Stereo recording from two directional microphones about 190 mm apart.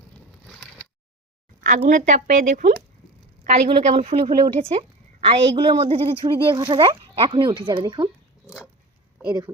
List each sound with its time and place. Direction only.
1.6 s a woman's voice: 40° right (ahead or behind); by 8.1 s 25° right (ahead or behind)
9.2 s speech: 20° right (ahead or behind)